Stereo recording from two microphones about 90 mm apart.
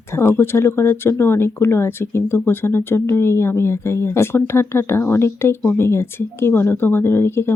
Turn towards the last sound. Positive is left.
turn(degrees=25)  # may be behind; listen again after turning